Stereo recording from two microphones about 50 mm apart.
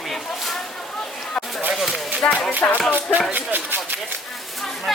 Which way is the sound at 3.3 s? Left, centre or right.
Right.